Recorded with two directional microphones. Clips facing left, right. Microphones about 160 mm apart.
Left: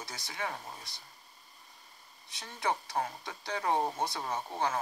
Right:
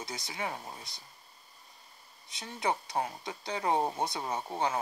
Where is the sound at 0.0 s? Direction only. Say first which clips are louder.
Right 2 dB; 20° right (ahead or behind).